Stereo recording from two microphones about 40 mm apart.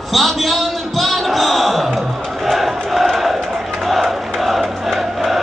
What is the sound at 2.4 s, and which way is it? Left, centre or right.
Crowd, centre.